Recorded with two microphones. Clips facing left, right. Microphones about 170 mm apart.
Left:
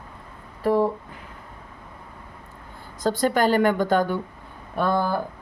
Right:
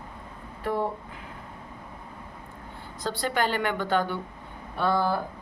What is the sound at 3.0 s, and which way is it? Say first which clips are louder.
A woman's voice: left 7 dB; 45° left (ahead or behind).